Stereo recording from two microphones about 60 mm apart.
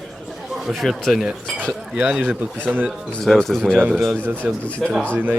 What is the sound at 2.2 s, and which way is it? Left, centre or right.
Speech, right.